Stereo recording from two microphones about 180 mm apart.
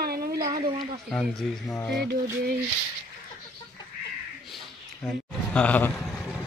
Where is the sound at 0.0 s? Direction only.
60° right (ahead or behind).